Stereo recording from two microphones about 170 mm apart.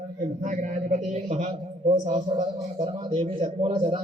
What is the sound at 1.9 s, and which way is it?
A man's voice, 35° right (ahead or behind).